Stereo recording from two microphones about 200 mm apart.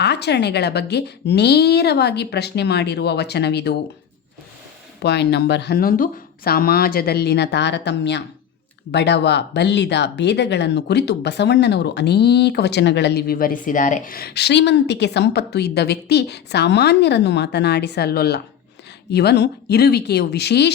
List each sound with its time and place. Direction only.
0.0 s speech: 55° left (ahead or behind)
5.0 s speech: 55° left (ahead or behind)